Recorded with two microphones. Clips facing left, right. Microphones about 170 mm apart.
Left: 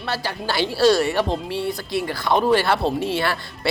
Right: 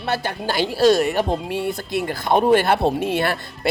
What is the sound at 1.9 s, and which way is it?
Speech, 50° right (ahead or behind).